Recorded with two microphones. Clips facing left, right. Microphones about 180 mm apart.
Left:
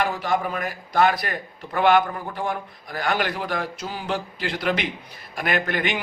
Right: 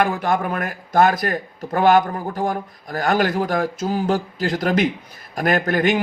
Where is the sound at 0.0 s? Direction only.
50° right (ahead or behind).